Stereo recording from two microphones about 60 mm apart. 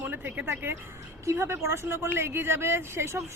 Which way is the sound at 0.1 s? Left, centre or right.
Right.